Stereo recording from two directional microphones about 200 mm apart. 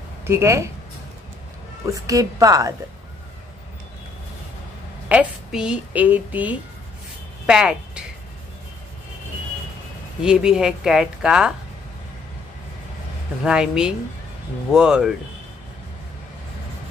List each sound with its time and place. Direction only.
0.2 s speech: 15° right (ahead or behind)
1.9 s a woman's voice: 15° right (ahead or behind)
5.0 s speech: 5° right (ahead or behind)
10.2 s speech: 5° right (ahead or behind)
13.4 s speech: 5° right (ahead or behind)